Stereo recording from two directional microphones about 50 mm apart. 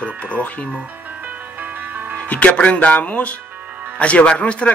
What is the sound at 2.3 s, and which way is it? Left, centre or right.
A man's voice, left.